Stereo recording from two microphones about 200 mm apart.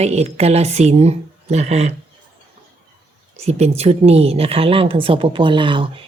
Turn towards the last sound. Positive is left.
turn(degrees=-25)  # may be behind; listen again after turning